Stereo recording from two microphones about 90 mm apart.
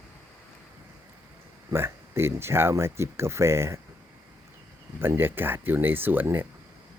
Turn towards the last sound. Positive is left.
turn(degrees=-20)  # may be behind; listen again after turning